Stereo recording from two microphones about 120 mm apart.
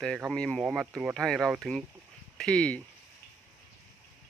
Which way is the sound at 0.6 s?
5° right (ahead or behind).